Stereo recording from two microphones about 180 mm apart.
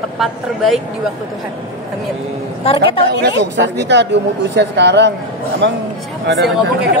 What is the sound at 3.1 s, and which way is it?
Speech, 70° right (ahead or behind).